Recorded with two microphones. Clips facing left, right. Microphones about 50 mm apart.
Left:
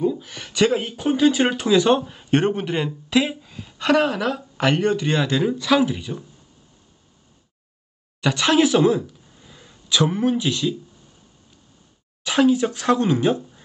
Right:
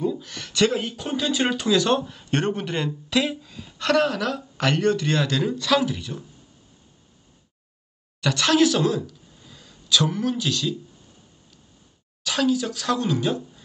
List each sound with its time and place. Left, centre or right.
0.0 s speech: centre
8.2 s speech: centre
12.2 s speech: left